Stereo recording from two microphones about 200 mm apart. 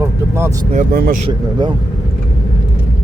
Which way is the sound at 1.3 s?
20° right (ahead or behind).